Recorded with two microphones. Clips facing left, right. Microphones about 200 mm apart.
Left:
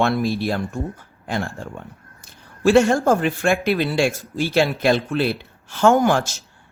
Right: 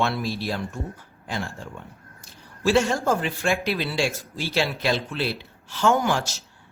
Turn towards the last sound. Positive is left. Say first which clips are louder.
# left 6 dB
turn(degrees=50)  # may be behind; listen again after turning